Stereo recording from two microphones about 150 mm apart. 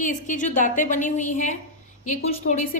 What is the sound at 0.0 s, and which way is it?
A woman's voice, 60° left (ahead or behind).